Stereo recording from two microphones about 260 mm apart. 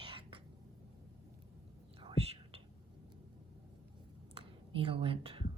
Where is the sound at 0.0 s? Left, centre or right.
Centre.